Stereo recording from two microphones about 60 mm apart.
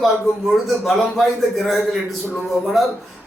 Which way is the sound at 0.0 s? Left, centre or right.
Centre.